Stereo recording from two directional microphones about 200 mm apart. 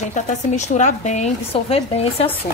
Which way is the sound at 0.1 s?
35° left (ahead or behind).